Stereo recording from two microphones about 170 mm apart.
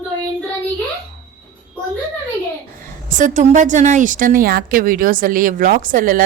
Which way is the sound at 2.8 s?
50° right (ahead or behind).